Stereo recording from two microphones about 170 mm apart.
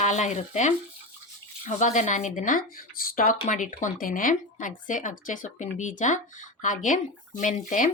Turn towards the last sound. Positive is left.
turn(degrees=50)  # may be behind; listen again after turning